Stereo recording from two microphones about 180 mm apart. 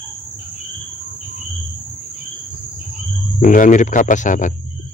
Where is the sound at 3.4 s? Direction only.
45° left (ahead or behind).